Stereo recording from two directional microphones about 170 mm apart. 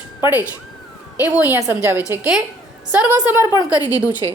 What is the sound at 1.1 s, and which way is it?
Speech, 20° left (ahead or behind).